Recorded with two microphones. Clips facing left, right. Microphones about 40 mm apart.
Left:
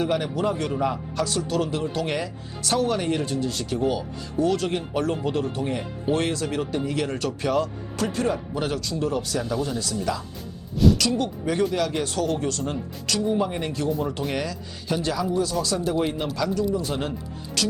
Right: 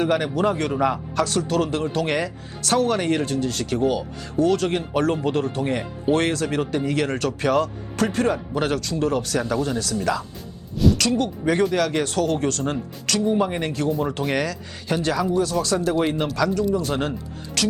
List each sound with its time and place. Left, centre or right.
0.0 s speech: right
10.8 s a sound: centre
11.2 s speech: right
14.3 s speech: right
14.8 s speech: right